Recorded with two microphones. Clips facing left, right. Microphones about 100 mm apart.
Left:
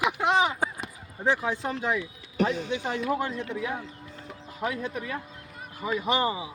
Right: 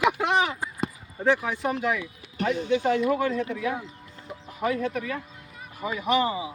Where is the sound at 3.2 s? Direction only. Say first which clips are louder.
Right 4 dB; 25° left (ahead or behind).